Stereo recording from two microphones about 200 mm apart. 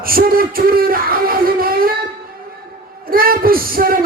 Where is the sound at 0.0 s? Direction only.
45° right (ahead or behind).